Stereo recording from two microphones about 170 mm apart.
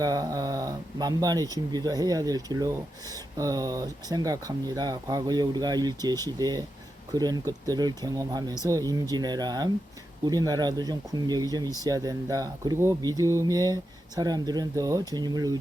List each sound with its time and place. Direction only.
0.0 s speech: 20° right (ahead or behind)